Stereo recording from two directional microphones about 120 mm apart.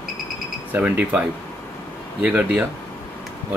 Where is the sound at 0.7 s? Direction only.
15° right (ahead or behind).